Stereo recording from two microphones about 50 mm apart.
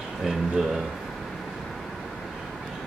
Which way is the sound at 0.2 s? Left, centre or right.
Centre.